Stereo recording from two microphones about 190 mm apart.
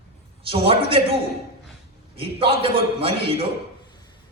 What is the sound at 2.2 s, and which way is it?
Speech, 30° right (ahead or behind).